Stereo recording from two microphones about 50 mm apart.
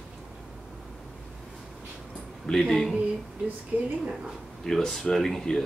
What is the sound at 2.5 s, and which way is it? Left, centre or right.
Speech, centre.